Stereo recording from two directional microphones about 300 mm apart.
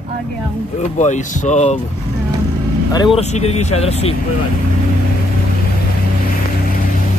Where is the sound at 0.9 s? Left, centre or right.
Left.